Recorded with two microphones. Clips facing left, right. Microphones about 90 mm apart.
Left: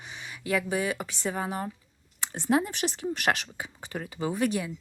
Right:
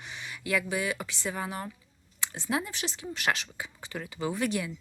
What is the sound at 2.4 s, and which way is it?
Speech, 40° left (ahead or behind).